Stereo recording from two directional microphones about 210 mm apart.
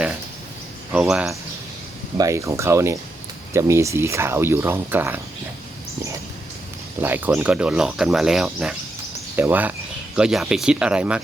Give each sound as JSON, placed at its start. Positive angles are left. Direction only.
{"t": 0.9, "sound": "speech", "side_deg": -5}
{"t": 2.1, "sound": "speech", "side_deg": -15}
{"t": 7.0, "sound": "speech", "side_deg": -10}